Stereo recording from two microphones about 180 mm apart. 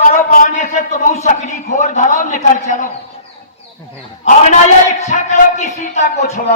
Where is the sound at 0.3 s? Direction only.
45° left (ahead or behind).